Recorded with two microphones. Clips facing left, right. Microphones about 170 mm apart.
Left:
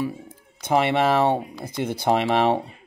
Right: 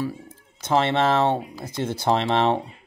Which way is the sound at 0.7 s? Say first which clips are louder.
Left 1 dB; 10° left (ahead or behind).